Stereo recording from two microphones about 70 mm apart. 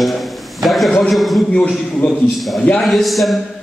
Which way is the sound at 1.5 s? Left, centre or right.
Centre.